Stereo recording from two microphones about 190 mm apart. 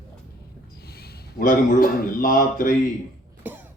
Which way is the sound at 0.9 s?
55° left (ahead or behind).